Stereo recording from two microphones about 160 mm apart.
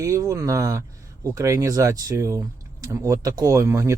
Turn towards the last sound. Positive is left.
turn(degrees=-20)  # may be behind; listen again after turning